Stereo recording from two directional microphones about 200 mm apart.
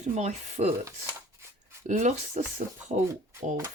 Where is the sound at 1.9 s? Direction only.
35° right (ahead or behind).